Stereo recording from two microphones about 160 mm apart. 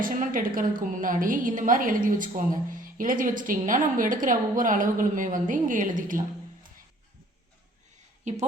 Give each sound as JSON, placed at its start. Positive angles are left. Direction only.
{"t": 0.0, "sound": "a woman's voice", "side_deg": -60}